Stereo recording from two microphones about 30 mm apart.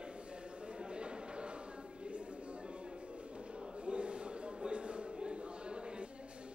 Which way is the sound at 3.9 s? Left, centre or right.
Right.